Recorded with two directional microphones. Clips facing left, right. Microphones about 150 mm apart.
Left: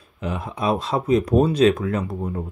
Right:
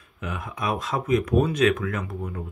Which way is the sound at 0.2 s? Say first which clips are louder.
Left 5 dB; 30° left (ahead or behind).